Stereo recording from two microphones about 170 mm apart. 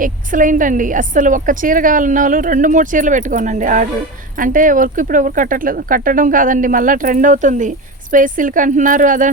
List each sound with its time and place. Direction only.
0.0 s a woman's voice: 50° right (ahead or behind)